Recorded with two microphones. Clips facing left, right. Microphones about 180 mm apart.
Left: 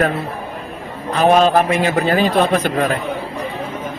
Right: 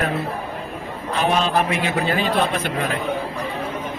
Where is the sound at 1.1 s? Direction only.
45° left (ahead or behind).